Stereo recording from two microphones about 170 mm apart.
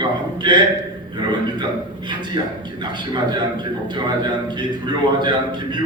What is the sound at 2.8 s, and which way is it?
A man's voice, 25° right (ahead or behind).